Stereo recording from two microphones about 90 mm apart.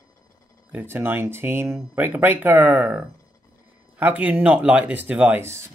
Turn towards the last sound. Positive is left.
turn(degrees=-25)  # may be behind; listen again after turning